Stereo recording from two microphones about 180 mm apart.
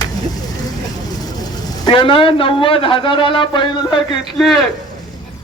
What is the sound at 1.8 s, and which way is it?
A man's voice, 30° left (ahead or behind).